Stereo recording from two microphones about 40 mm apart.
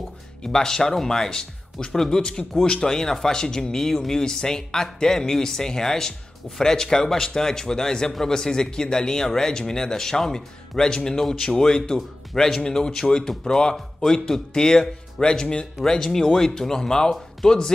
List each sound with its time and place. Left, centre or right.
0.4 s speech: centre
2.6 s speech: centre
17.1 s a sound: centre